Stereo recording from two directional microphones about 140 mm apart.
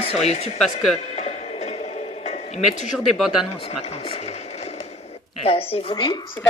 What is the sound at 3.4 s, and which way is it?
Speech, 45° left (ahead or behind).